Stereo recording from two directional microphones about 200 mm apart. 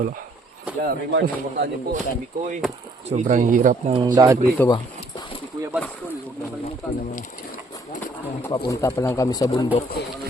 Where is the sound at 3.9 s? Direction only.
20° right (ahead or behind).